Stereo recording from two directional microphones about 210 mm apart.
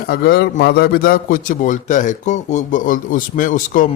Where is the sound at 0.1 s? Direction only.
50° left (ahead or behind).